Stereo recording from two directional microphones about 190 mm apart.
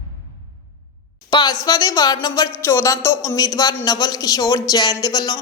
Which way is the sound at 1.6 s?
20° left (ahead or behind).